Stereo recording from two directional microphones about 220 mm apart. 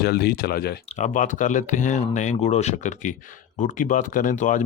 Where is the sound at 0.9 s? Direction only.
35° left (ahead or behind).